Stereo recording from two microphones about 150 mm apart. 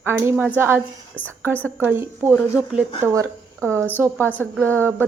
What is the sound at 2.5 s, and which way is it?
Speech, 10° right (ahead or behind).